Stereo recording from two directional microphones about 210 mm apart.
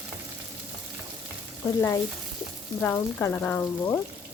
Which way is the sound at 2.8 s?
10° left (ahead or behind).